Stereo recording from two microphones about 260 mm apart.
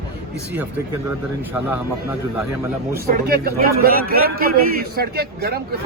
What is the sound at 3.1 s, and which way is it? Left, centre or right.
A man's voice, right.